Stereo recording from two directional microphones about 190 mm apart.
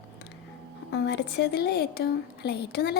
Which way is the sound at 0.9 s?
65° left (ahead or behind).